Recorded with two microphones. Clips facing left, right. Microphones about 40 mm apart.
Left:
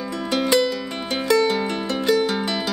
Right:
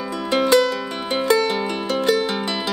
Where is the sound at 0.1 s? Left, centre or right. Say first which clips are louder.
Right 3 dB; centre.